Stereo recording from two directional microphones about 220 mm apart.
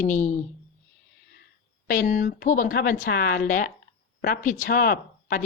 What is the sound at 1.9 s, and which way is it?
Speech, 35° left (ahead or behind).